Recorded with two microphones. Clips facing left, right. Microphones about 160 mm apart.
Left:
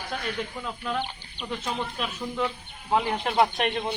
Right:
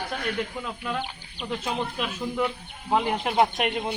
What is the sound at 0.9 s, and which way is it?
Speech, 5° right (ahead or behind).